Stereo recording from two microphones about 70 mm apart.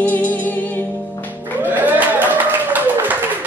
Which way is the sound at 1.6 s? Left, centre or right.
Right.